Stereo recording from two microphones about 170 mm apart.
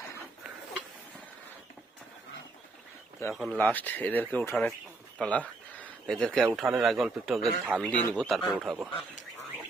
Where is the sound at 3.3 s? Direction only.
5° right (ahead or behind).